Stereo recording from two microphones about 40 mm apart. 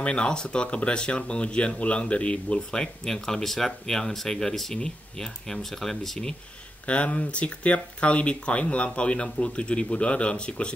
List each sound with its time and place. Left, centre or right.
0.0 s speech: left
2.7 s speech: centre
6.9 s speech: left